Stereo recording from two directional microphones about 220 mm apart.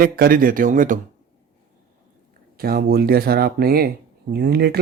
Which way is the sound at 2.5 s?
45° right (ahead or behind).